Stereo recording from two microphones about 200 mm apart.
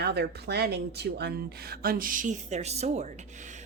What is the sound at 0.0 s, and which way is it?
Speech, 55° right (ahead or behind).